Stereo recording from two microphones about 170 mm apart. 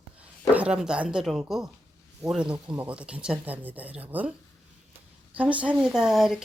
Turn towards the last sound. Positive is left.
turn(degrees=0)  # may be behind; listen again after turning